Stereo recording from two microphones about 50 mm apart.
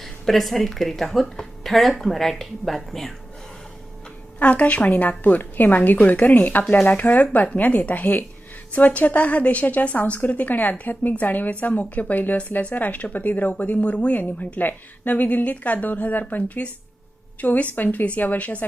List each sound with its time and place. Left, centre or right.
0.0 s speech: centre
4.4 s a woman's voice: left